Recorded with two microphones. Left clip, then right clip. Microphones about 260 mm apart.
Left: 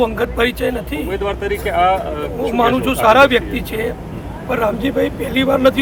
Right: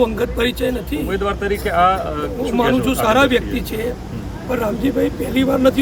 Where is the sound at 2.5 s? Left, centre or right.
Centre.